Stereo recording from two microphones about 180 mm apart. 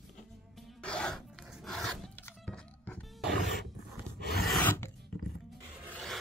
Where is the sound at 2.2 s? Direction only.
10° left (ahead or behind).